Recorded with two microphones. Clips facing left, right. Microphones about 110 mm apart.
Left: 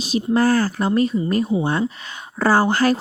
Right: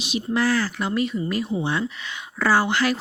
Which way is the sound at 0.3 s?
45° left (ahead or behind).